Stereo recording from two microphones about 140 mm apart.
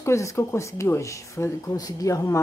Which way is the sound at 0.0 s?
20° left (ahead or behind).